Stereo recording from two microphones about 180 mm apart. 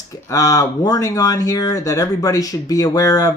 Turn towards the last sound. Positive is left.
turn(degrees=20)  # may be behind; listen again after turning